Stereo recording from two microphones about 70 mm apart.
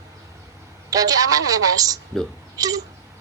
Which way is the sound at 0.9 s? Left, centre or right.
Right.